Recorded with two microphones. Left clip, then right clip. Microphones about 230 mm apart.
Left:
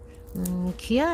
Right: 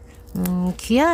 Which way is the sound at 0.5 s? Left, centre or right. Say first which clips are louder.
Right 5 dB; right.